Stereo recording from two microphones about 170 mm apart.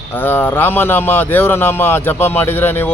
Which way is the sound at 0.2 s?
10° left (ahead or behind).